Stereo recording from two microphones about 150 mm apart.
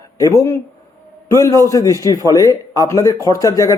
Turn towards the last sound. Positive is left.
turn(degrees=20)  # may be behind; listen again after turning